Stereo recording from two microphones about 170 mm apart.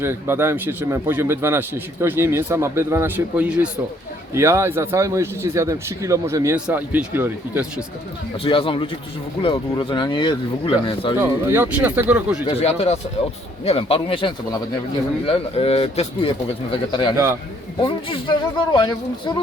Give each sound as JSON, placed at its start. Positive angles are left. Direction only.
{"t": 0.0, "sound": "speech", "side_deg": -15}
{"t": 8.4, "sound": "speech", "side_deg": 30}
{"t": 11.2, "sound": "speech", "side_deg": -15}
{"t": 12.5, "sound": "speech", "side_deg": 35}